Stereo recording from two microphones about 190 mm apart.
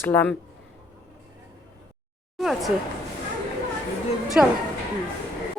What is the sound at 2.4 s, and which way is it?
Speech, centre (ahead or behind).